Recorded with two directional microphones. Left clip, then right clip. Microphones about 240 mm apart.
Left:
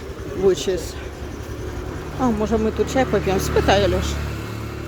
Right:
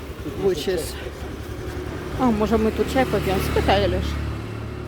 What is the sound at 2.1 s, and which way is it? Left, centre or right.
Speech, centre.